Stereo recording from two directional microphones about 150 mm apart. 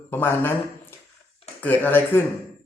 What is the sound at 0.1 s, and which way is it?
Speech, 15° left (ahead or behind).